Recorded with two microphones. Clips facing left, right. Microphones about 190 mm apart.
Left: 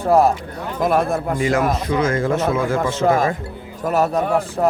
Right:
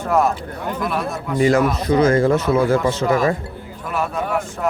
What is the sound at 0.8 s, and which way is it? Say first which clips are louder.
Speech: left 8 dB; 45° left (ahead or behind).